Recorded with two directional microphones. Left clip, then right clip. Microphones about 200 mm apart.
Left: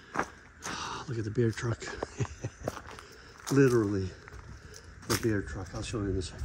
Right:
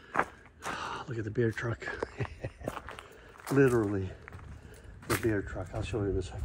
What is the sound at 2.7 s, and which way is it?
Walk, 5° left (ahead or behind).